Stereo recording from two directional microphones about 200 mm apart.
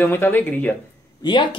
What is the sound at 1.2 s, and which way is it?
Speech, 25° left (ahead or behind).